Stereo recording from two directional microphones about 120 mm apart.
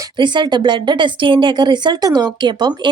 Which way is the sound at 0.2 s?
40° right (ahead or behind).